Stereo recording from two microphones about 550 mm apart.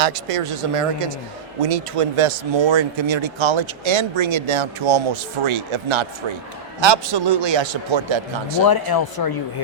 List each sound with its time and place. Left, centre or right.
0.0 s speech: right
6.7 s a man's voice: right
8.6 s speech: left